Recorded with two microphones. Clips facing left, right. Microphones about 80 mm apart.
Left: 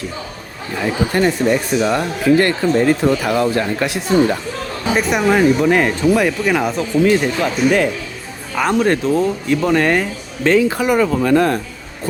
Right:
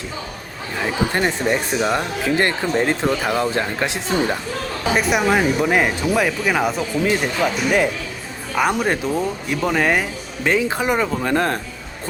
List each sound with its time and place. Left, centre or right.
1.1 s speech: right
4.9 s speech: centre
10.7 s speech: right